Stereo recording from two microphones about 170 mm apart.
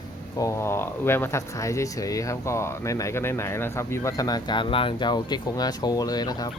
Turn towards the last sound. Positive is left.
turn(degrees=25)  # may be behind; listen again after turning